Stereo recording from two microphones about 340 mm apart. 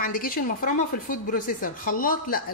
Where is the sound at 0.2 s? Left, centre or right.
Left.